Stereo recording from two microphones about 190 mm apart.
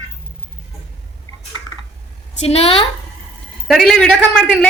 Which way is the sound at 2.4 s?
30° left (ahead or behind).